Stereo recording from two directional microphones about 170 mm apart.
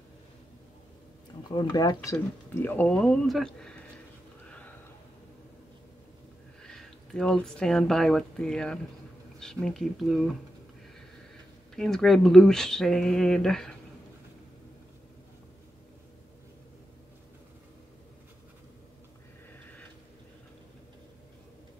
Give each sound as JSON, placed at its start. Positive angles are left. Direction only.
{"t": 1.5, "sound": "speech", "side_deg": 25}
{"t": 2.1, "sound": "speech", "side_deg": 10}
{"t": 6.6, "sound": "speech", "side_deg": 5}
{"t": 11.7, "sound": "speech", "side_deg": 0}